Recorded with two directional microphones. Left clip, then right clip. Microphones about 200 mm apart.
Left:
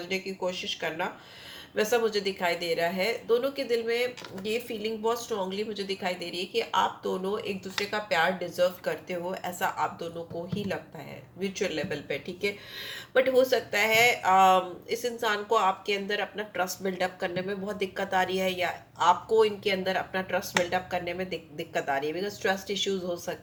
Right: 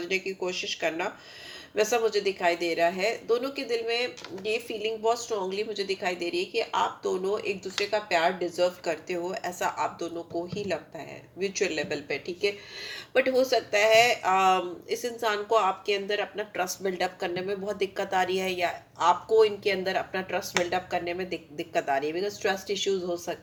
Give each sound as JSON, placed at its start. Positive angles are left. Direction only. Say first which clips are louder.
{"t": 0.1, "sound": "speech", "louder": "right 1 dB", "side_deg": -40}